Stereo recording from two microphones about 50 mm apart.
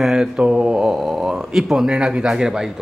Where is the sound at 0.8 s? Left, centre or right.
Centre.